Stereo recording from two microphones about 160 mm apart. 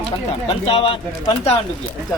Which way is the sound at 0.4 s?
35° left (ahead or behind).